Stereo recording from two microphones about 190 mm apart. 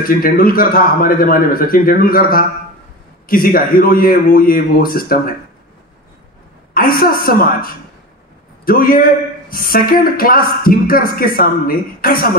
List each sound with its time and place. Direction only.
0.0 s speech: 50° left (ahead or behind)
6.7 s speech: 50° left (ahead or behind)